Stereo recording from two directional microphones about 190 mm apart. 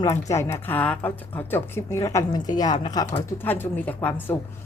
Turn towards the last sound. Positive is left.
turn(degrees=10)  # may be behind; listen again after turning